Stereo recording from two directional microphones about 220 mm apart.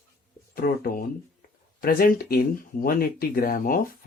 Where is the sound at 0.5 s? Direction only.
40° left (ahead or behind).